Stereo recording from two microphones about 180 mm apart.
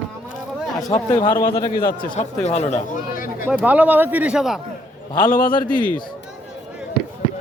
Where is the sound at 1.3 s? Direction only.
55° left (ahead or behind); by 2.8 s 40° left (ahead or behind).